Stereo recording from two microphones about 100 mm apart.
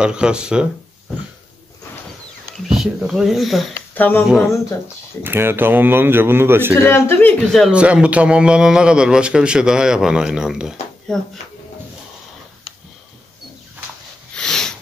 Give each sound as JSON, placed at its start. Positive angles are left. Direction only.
{"t": 0.0, "sound": "a man's voice", "side_deg": -10}
{"t": 2.7, "sound": "speech", "side_deg": -5}
{"t": 3.9, "sound": "speech", "side_deg": 20}
{"t": 5.2, "sound": "speech", "side_deg": -25}
{"t": 6.7, "sound": "speech", "side_deg": 25}
{"t": 7.7, "sound": "a man's voice", "side_deg": -10}
{"t": 14.3, "sound": "a sound", "side_deg": 5}